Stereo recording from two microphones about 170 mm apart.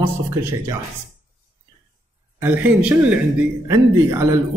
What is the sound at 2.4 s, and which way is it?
Speech, 10° right (ahead or behind).